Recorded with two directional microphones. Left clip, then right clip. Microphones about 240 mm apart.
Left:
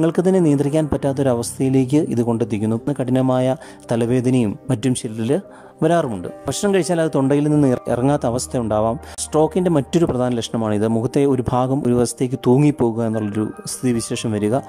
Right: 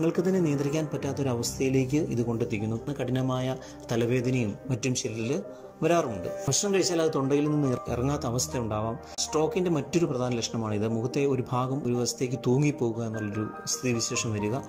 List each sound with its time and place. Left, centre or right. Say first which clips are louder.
0.0 s speech: left 10 dB; left
6.7 s speech: left 8 dB; left
12.8 s a man's voice: left 11 dB; left
13.8 s speech: left 8 dB; left